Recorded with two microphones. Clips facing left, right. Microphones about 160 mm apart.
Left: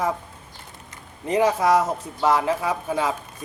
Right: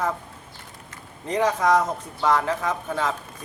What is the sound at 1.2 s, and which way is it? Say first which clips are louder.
Speech: left 2 dB; 10° left (ahead or behind).